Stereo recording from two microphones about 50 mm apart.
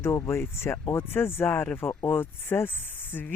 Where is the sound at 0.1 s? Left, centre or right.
Left.